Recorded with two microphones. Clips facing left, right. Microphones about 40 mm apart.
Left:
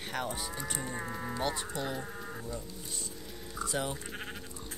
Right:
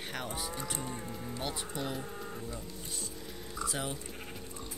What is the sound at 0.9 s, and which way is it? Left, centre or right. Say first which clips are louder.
Speech: left 4 dB; left.